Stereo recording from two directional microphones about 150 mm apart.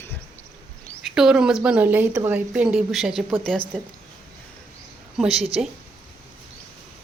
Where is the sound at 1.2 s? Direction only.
5° right (ahead or behind).